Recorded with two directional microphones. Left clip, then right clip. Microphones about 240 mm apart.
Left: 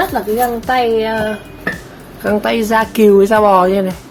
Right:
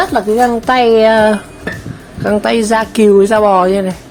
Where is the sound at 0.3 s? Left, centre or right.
Right.